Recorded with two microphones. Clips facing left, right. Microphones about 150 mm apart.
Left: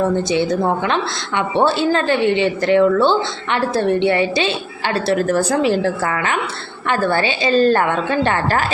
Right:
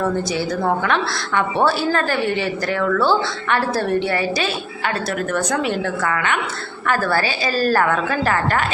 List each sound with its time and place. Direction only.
0.3 s a woman's voice: 25° left (ahead or behind)